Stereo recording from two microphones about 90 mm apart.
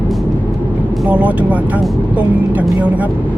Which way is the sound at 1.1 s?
15° right (ahead or behind).